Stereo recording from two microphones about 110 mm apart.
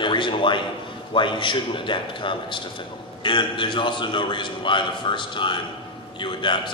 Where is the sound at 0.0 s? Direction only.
50° left (ahead or behind).